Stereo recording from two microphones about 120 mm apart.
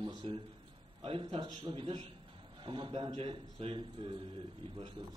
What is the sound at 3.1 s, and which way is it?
Speech, 55° right (ahead or behind).